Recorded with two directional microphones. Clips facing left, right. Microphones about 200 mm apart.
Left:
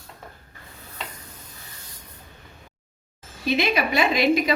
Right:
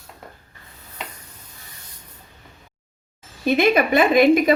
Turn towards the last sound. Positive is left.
turn(degrees=-50)  # may be behind; listen again after turning